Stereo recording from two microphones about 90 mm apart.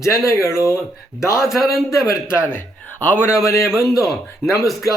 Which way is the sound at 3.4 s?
35° left (ahead or behind).